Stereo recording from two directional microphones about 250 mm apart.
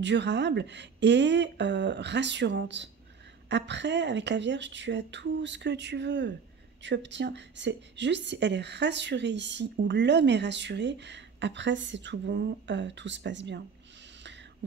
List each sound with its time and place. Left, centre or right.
0.0 s a woman's voice: right